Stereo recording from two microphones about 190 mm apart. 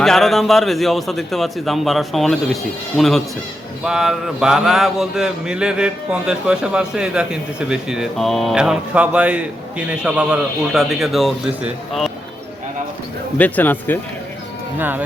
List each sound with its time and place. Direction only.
0.0 s speech: centre (ahead or behind)
13.4 s speech: 10° left (ahead or behind)
14.8 s speech: 10° right (ahead or behind)